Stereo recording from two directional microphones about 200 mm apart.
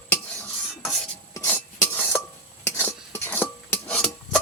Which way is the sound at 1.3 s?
10° left (ahead or behind).